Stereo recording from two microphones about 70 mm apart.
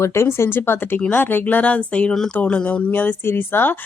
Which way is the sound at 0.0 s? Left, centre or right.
Left.